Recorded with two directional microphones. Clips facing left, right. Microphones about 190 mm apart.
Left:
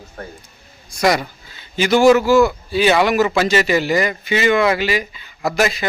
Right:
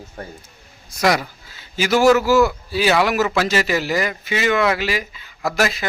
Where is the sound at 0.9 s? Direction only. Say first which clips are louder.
Left 2 dB; centre (ahead or behind).